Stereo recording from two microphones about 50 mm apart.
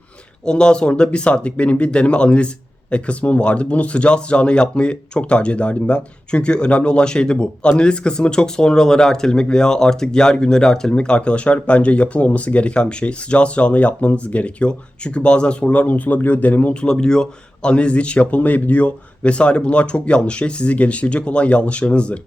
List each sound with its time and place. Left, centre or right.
0.4 s speech: centre
16.8 s speech: centre